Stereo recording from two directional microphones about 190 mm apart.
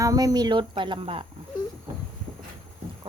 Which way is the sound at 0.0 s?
20° right (ahead or behind).